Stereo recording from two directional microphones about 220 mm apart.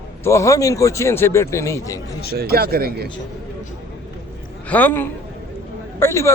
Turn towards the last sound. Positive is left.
turn(degrees=10)  # may be behind; listen again after turning